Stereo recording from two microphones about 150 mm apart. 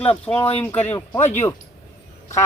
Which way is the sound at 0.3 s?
10° left (ahead or behind).